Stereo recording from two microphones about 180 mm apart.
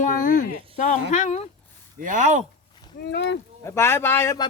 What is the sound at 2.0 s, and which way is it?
Speech, 45° right (ahead or behind).